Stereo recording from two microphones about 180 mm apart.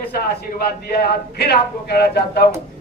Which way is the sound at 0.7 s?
65° left (ahead or behind).